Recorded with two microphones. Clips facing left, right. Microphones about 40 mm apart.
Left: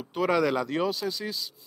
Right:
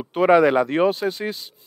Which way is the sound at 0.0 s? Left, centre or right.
Right.